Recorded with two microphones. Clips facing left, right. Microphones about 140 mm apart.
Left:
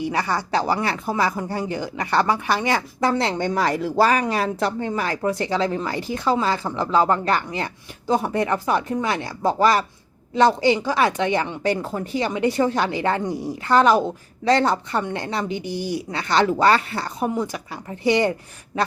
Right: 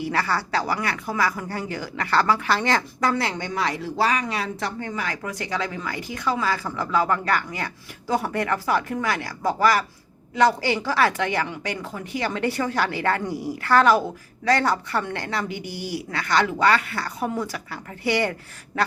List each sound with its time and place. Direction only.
0.0 s speech: 20° left (ahead or behind)
3.1 s speech: 30° left (ahead or behind)
3.4 s speech: 45° left (ahead or behind)
4.9 s speech: 35° left (ahead or behind)
12.2 s speech: 20° left (ahead or behind)
18.7 s a sound: 20° left (ahead or behind)